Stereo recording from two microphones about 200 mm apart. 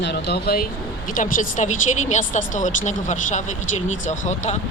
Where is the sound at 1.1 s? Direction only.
40° left (ahead or behind).